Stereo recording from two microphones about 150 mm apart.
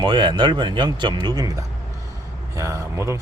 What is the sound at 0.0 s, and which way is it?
Speech, 30° right (ahead or behind).